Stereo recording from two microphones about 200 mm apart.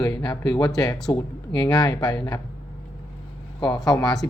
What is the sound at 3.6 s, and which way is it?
Speech, 20° left (ahead or behind).